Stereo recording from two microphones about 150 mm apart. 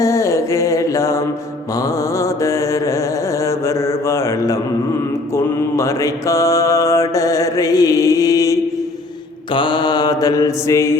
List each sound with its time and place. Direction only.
0.0 s a sound: 20° left (ahead or behind)
2.1 s mantra: 20° left (ahead or behind)
5.7 s mantra: 20° left (ahead or behind)
9.6 s mantra: 30° left (ahead or behind)